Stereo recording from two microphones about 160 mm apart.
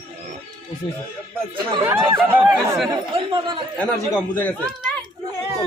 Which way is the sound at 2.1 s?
10° right (ahead or behind).